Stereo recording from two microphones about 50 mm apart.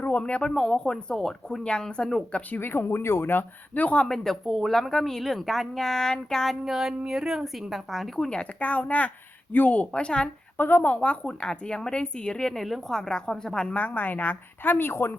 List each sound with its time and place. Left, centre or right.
0.2 s a woman's voice: left
2.6 s speech: left
3.8 s speech: left
4.0 s a woman's voice: centre
6.5 s a woman's voice: centre
8.3 s speech: left
9.9 s speech: centre
10.6 s speech: left
10.9 s a woman's voice: left
13.7 s speech: left